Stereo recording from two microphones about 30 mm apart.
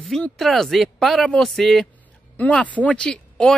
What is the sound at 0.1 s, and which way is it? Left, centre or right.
Speech, centre.